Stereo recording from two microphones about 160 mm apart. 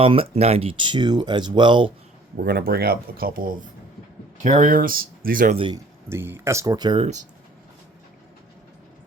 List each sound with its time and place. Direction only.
0.0 s speech: 35° right (ahead or behind)
2.3 s speech: 75° right (ahead or behind)
5.5 s speech: 30° right (ahead or behind)
6.1 s speech: 15° right (ahead or behind)